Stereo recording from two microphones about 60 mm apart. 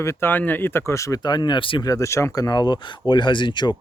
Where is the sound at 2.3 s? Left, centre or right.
Left.